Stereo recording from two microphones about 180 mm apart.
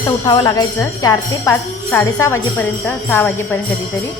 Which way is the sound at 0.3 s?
20° left (ahead or behind).